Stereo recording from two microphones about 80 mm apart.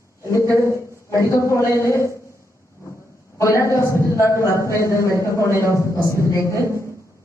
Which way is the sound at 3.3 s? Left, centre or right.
Left.